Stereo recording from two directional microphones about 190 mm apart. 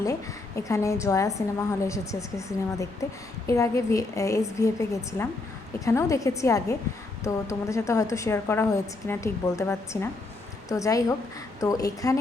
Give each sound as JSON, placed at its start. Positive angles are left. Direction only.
{"t": 0.0, "sound": "a woman's voice", "side_deg": 15}